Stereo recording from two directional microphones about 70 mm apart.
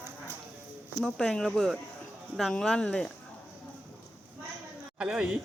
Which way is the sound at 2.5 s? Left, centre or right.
Centre.